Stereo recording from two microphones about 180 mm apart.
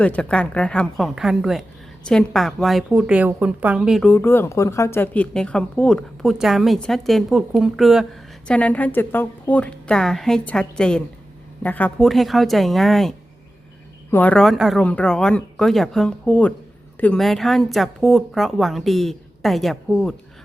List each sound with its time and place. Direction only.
0.0 s speech: 5° left (ahead or behind)
4.1 s a woman's voice: 10° left (ahead or behind)